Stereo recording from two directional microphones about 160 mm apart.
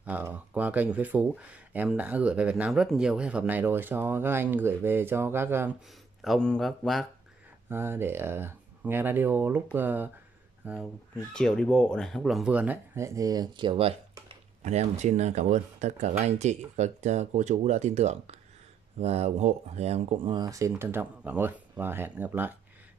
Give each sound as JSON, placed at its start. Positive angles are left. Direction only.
{"t": 0.0, "sound": "speech", "side_deg": -10}
{"t": 6.2, "sound": "speech", "side_deg": 5}
{"t": 7.7, "sound": "speech", "side_deg": -15}
{"t": 11.3, "sound": "speech", "side_deg": 5}
{"t": 14.6, "sound": "speech", "side_deg": -45}
{"t": 20.3, "sound": "speech", "side_deg": -20}